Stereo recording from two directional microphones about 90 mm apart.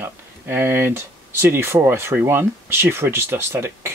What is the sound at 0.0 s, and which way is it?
Speech, 25° right (ahead or behind).